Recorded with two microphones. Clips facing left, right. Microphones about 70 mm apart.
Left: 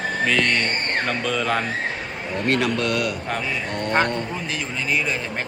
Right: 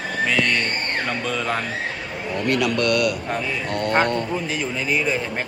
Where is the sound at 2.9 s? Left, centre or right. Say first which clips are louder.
Right 3 dB; centre.